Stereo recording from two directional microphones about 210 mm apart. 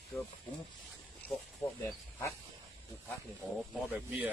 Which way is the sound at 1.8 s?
10° left (ahead or behind).